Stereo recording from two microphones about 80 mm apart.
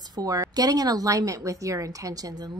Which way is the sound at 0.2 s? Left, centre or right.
Right.